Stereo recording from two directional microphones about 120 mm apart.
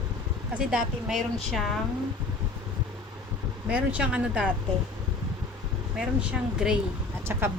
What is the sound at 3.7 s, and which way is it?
Speech, 10° right (ahead or behind).